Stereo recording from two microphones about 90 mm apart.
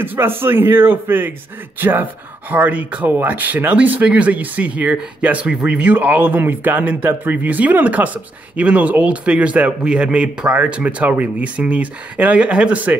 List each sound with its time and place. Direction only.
0.0 s a man's voice: 25° right (ahead or behind)